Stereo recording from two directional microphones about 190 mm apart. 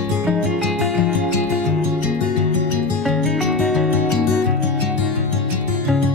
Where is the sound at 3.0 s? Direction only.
Centre (ahead or behind).